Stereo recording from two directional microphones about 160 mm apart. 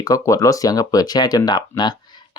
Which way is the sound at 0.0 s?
20° left (ahead or behind).